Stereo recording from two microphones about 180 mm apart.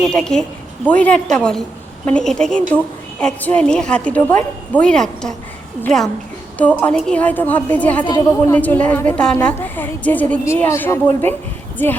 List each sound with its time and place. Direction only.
0.0 s a woman's voice: 5° left (ahead or behind)
8.0 s a woman's voice: 25° left (ahead or behind)
8.5 s a woman's voice: 10° left (ahead or behind)